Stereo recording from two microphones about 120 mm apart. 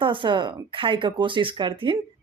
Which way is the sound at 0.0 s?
45° right (ahead or behind).